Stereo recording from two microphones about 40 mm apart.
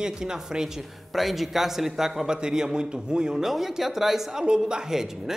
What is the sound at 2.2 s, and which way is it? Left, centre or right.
Speech, centre.